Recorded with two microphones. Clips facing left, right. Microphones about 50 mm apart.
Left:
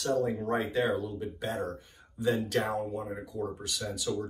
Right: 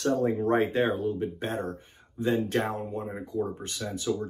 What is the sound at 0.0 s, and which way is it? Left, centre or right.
Speech, right.